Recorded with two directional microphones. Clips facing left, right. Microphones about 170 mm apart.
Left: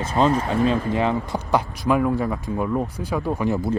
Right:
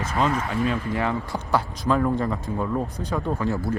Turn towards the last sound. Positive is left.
turn(degrees=20)  # may be behind; listen again after turning